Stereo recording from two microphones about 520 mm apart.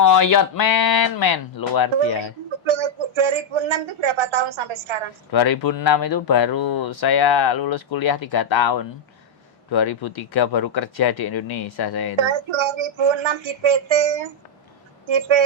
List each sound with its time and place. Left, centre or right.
0.0 s speech: left
0.6 s speech: left
2.6 s a man's voice: right
5.3 s speech: left
7.9 s speech: left
9.8 s speech: left
10.2 s speech: left
10.6 s speech: left
12.1 s speech: right